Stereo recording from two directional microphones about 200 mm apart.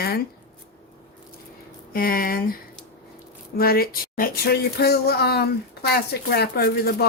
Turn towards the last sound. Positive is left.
turn(degrees=50)  # may be behind; listen again after turning